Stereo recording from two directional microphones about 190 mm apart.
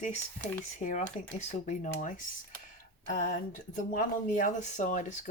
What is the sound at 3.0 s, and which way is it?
A woman's voice, 40° left (ahead or behind).